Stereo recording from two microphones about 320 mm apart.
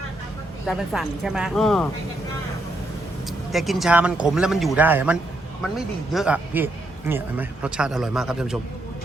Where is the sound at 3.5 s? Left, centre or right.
Centre.